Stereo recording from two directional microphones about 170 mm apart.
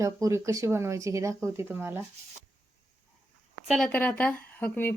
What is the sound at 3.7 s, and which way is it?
Speech, 5° left (ahead or behind).